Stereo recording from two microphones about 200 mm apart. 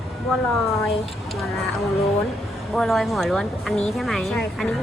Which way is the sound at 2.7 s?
Centre (ahead or behind).